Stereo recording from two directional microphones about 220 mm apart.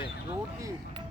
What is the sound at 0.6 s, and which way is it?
Speech, 15° right (ahead or behind).